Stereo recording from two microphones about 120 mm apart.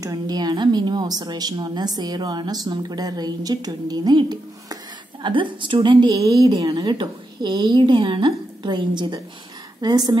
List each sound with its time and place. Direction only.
0.0 s a woman's voice: 35° right (ahead or behind)
6.5 s a woman's voice: 40° right (ahead or behind)